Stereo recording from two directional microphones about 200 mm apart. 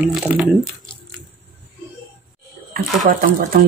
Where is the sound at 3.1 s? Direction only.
45° right (ahead or behind).